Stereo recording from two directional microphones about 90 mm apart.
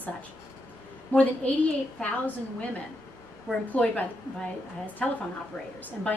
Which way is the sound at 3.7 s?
15° left (ahead or behind).